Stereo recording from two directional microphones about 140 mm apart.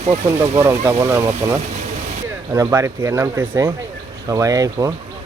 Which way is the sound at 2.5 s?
20° right (ahead or behind).